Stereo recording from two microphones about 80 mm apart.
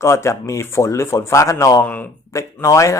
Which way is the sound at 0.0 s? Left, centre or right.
Left.